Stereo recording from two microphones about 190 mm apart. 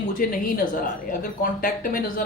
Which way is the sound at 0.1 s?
45° left (ahead or behind).